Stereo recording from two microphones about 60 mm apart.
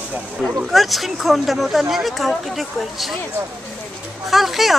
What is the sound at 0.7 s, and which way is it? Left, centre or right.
Speech, centre.